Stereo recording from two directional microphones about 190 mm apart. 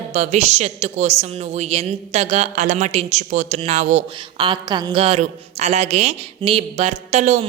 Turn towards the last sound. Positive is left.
turn(degrees=-40)  # may be behind; listen again after turning